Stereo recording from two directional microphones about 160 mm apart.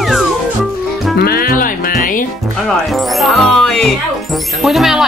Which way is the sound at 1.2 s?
65° left (ahead or behind).